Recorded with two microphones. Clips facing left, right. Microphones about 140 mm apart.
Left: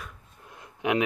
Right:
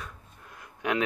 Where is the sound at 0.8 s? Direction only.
20° left (ahead or behind).